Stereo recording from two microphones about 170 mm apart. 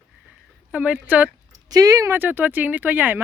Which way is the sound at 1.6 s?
20° right (ahead or behind).